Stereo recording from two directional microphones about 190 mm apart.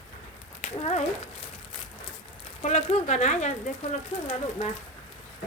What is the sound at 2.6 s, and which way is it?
A woman's voice, 30° left (ahead or behind).